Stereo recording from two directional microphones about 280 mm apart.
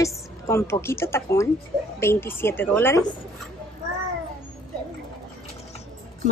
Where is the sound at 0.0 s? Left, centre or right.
Centre.